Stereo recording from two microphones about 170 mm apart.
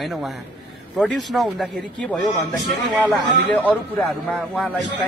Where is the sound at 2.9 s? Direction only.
20° right (ahead or behind).